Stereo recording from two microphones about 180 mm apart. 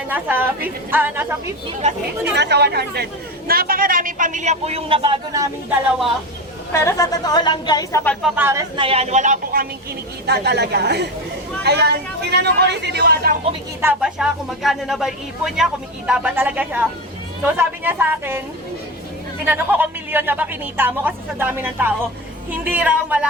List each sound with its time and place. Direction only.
0.1 s a woman's voice: 10° right (ahead or behind)
1.8 s speech: 40° right (ahead or behind)
2.3 s speech: 70° right (ahead or behind); by 5.5 s 25° right (ahead or behind)
6.8 s speech: 20° left (ahead or behind)
8.0 s speech: 5° left (ahead or behind)
8.4 s a woman's voice: 15° right (ahead or behind)
8.7 s speech: 30° right (ahead or behind); by 9.6 s 50° right (ahead or behind)
10.2 s speech: 65° right (ahead or behind)
13.8 s a woman's voice: 5° right (ahead or behind)
19.5 s a woman's voice: 10° right (ahead or behind)